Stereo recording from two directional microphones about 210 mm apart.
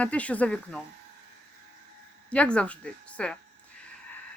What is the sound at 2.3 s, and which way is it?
Speech, 5° left (ahead or behind).